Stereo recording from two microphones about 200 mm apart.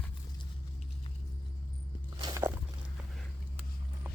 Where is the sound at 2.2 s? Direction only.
15° right (ahead or behind).